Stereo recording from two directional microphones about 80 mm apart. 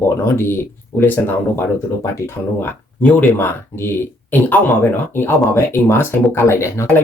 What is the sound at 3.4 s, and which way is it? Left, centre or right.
Speech, left.